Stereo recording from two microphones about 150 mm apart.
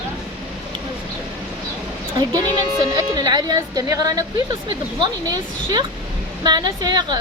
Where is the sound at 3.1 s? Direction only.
25° right (ahead or behind).